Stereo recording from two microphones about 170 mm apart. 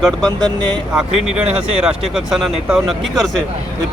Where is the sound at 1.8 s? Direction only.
5° right (ahead or behind).